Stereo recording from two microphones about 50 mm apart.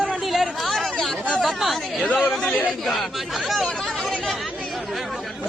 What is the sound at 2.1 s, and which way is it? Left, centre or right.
Speech, left.